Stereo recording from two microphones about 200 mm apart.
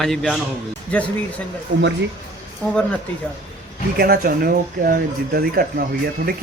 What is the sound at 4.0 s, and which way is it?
Speech, 50° right (ahead or behind).